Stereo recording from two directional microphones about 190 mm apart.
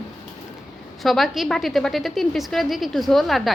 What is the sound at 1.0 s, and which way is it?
A woman's voice, centre (ahead or behind).